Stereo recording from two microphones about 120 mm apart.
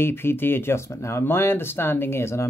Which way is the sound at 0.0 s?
20° left (ahead or behind).